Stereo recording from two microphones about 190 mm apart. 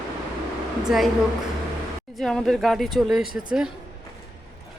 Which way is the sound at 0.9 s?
Centre (ahead or behind).